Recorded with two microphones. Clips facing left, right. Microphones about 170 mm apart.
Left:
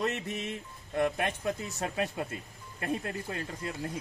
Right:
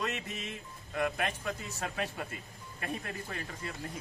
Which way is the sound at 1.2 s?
20° left (ahead or behind).